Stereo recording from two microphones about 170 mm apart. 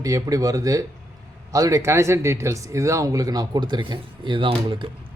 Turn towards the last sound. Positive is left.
turn(degrees=-30)  # may be behind; listen again after turning